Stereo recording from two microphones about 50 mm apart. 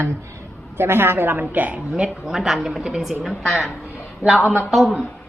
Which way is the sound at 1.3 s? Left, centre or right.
Right.